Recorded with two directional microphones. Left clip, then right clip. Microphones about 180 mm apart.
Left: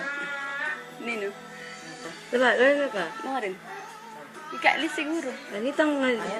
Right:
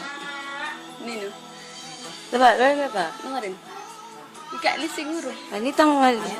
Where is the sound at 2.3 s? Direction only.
40° right (ahead or behind).